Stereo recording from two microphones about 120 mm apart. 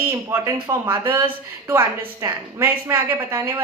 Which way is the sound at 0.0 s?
20° right (ahead or behind).